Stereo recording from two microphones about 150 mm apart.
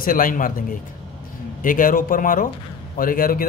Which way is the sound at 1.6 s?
65° left (ahead or behind).